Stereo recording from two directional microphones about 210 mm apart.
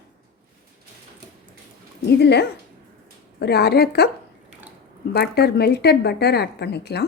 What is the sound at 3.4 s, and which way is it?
Speech, 50° left (ahead or behind).